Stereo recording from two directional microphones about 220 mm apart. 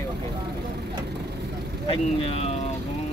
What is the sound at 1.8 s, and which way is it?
Speech, 25° left (ahead or behind).